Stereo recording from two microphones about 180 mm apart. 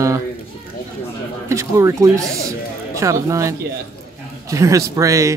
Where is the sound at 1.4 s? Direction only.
15° right (ahead or behind).